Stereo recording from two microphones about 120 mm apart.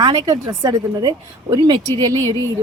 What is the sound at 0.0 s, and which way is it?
A woman's voice, 30° right (ahead or behind).